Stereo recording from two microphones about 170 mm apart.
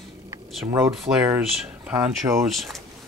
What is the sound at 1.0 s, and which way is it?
Speech, 5° right (ahead or behind).